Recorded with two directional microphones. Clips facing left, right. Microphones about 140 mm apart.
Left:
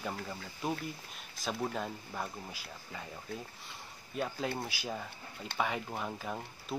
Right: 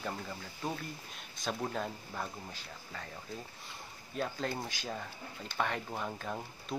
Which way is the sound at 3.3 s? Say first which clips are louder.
Left 2 dB; 60° left (ahead or behind).